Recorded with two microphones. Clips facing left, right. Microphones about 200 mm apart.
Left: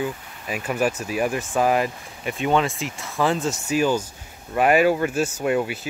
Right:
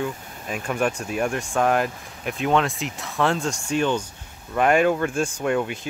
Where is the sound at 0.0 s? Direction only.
5° left (ahead or behind).